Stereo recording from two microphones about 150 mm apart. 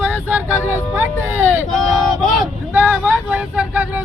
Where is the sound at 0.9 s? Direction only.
15° right (ahead or behind).